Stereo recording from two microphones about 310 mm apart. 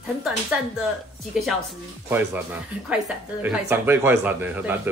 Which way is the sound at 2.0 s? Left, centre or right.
Centre.